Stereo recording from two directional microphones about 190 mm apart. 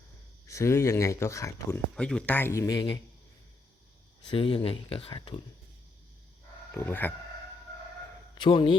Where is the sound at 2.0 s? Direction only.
5° left (ahead or behind); by 3.0 s 25° left (ahead or behind).